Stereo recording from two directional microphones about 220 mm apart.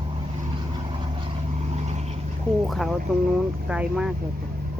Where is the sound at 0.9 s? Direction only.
20° right (ahead or behind).